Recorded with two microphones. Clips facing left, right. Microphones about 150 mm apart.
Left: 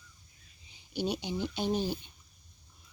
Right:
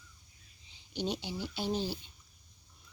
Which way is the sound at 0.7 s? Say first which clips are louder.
Left 2 dB; 10° left (ahead or behind).